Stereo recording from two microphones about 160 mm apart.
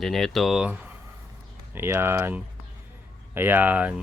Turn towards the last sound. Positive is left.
turn(degrees=-10)  # may be behind; listen again after turning